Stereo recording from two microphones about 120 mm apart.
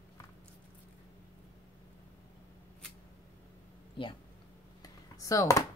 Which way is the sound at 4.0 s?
45° left (ahead or behind).